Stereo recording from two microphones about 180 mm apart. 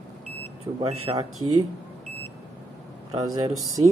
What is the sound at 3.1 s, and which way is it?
Speech, 20° right (ahead or behind).